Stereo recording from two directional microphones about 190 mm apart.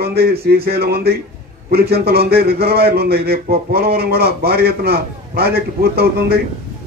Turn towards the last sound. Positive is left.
turn(degrees=-55)  # may be behind; listen again after turning